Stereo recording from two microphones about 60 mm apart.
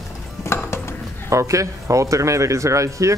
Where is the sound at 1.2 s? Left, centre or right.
Right.